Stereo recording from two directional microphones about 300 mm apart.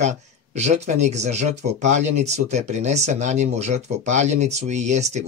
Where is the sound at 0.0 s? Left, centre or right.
Right.